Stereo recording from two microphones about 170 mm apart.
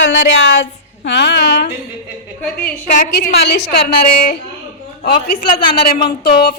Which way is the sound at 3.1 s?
70° left (ahead or behind).